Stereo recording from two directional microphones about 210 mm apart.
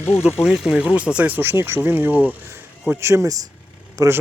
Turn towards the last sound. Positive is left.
turn(degrees=-15)  # may be behind; listen again after turning